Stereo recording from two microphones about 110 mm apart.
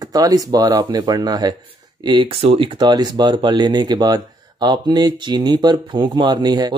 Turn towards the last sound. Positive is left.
turn(degrees=-40)  # may be behind; listen again after turning